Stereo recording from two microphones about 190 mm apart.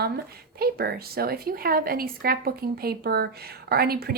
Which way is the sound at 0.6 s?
55° right (ahead or behind).